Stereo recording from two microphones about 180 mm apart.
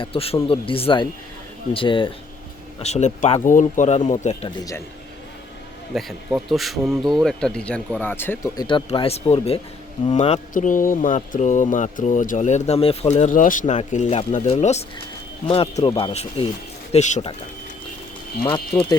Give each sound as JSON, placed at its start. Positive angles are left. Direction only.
{"t": 0.0, "sound": "a man's voice", "side_deg": 30}
{"t": 2.8, "sound": "speech", "side_deg": 40}
{"t": 5.9, "sound": "speech", "side_deg": 0}
{"t": 8.6, "sound": "speech", "side_deg": 25}
{"t": 18.4, "sound": "a man's voice", "side_deg": 30}